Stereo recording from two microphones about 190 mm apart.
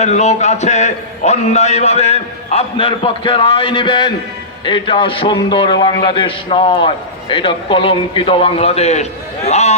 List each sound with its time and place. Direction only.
0.0 s a man's voice: 35° left (ahead or behind)